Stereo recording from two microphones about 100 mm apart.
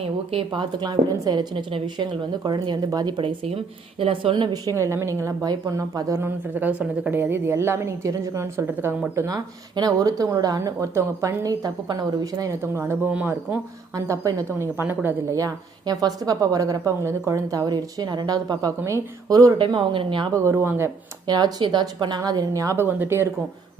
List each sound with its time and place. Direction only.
0.5 s a woman's voice: 45° right (ahead or behind)
3.2 s speech: 80° right
4.0 s a woman's voice: 60° right (ahead or behind); by 4.7 s 45° right (ahead or behind)
4.8 s a woman's voice: 30° right (ahead or behind)
6.2 s a woman's voice: 20° right (ahead or behind)
9.1 s a woman's voice: 35° right (ahead or behind); by 13.6 s 15° right (ahead or behind)
13.9 s a woman's voice: 35° right (ahead or behind)
15.4 s a woman's voice: 40° right (ahead or behind)
18.8 s a woman's voice: 25° right (ahead or behind)
19.3 s a woman's voice: 35° right (ahead or behind)
19.5 s a woman's voice: 55° right (ahead or behind)
20.3 s a woman's voice: 25° right (ahead or behind)
21.2 s a woman's voice: 45° right (ahead or behind); by 23.3 s 25° right (ahead or behind)